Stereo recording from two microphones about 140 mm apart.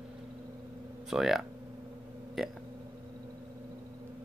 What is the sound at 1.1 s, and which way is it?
Speech, centre (ahead or behind).